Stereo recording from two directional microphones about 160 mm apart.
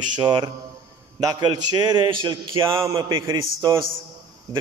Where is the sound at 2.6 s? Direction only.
20° right (ahead or behind).